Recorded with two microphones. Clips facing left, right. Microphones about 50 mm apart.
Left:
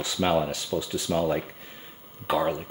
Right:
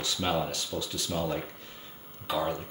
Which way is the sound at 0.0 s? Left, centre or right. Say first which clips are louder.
Left 5 dB; centre.